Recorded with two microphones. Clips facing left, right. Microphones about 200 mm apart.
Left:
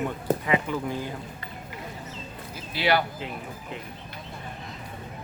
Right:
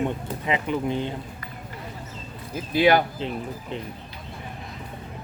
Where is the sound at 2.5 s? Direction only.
45° right (ahead or behind).